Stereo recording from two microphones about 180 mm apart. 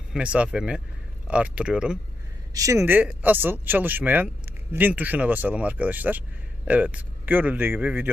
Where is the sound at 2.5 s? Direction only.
20° right (ahead or behind).